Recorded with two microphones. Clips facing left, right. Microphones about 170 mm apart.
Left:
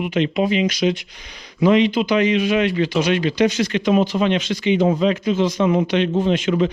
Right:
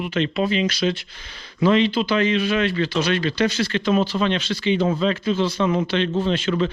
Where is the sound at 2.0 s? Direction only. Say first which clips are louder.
Left 3 dB; 15° left (ahead or behind).